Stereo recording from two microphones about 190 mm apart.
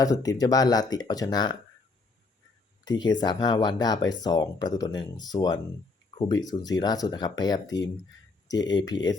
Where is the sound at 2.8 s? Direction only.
20° left (ahead or behind).